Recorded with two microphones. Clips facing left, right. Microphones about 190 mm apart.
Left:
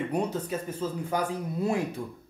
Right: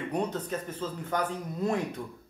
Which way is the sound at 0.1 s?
10° left (ahead or behind).